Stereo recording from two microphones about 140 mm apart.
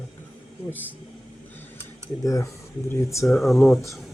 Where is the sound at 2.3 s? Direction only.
25° left (ahead or behind).